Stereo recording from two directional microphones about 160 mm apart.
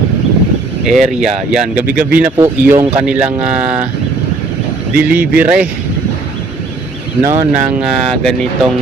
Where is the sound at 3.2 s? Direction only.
40° right (ahead or behind).